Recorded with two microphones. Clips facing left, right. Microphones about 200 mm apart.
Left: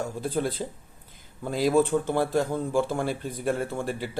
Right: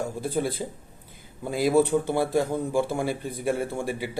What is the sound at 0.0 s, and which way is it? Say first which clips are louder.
Speech: right 1 dB; 10° right (ahead or behind).